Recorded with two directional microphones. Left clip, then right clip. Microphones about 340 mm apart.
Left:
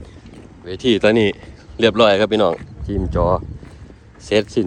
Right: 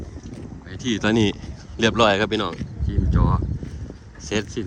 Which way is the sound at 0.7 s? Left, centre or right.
Centre.